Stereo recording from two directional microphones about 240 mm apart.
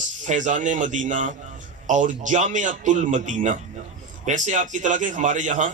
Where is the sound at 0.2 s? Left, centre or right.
Right.